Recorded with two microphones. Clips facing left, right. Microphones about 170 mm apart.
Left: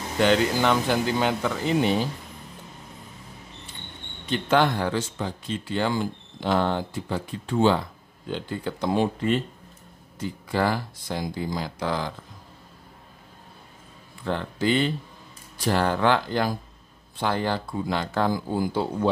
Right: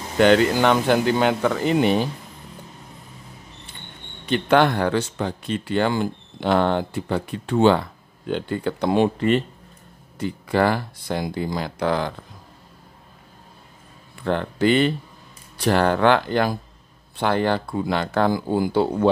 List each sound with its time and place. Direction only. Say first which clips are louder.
0.2 s speech: right 5 dB; 60° right (ahead or behind)
4.3 s speech: right 4 dB; 65° right (ahead or behind)
14.2 s speech: right 5 dB; 60° right (ahead or behind)